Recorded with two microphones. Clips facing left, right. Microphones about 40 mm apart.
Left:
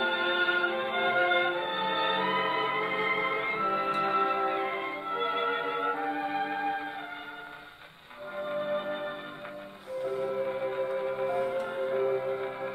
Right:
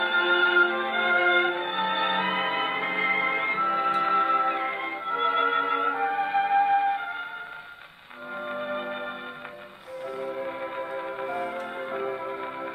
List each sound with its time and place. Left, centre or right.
0.0 s music: right
8.5 s music: right
10.2 s music: centre